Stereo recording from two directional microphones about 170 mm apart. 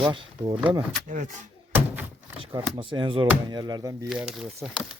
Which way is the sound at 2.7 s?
30° right (ahead or behind).